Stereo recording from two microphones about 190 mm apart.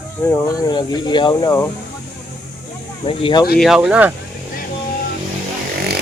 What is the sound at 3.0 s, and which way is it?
Speech, 25° left (ahead or behind).